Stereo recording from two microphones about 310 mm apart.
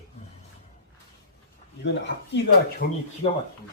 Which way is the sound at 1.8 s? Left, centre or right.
Left.